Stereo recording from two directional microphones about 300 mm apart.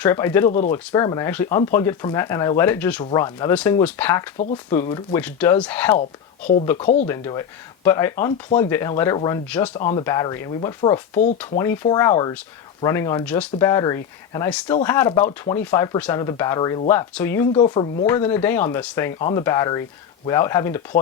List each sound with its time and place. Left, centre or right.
0.0 s speech: centre
0.4 s speech: left
0.7 s speech: centre
7.1 s speech: centre